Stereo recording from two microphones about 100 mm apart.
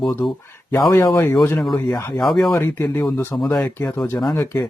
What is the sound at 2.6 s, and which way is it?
Speech, 20° left (ahead or behind).